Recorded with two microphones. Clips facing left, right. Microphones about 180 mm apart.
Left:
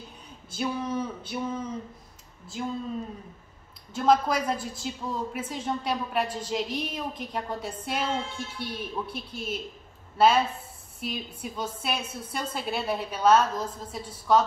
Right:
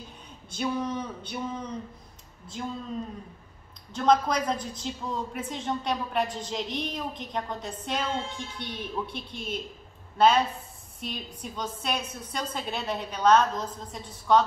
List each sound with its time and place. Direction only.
0.5 s a woman's voice: 5° left (ahead or behind)
3.9 s a woman's voice: 5° left (ahead or behind)